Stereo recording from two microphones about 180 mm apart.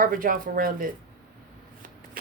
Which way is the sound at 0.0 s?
50° right (ahead or behind).